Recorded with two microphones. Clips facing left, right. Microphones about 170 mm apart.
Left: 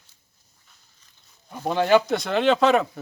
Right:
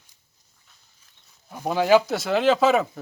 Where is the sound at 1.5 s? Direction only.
5° right (ahead or behind).